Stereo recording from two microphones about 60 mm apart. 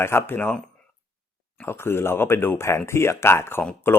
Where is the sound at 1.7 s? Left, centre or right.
Left.